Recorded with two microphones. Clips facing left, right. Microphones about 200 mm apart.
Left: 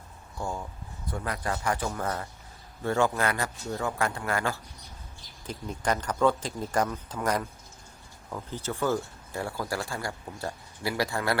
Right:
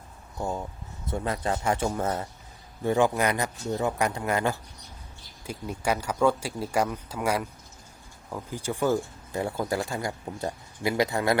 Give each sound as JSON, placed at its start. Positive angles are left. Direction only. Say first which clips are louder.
{"t": 0.3, "sound": "speech", "louder": "right 3 dB", "side_deg": -20}
{"t": 5.5, "sound": "speech", "louder": "right 1 dB", "side_deg": -10}